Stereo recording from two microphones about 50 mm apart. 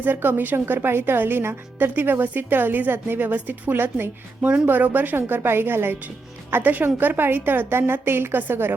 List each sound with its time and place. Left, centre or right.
0.0 s a woman's voice: right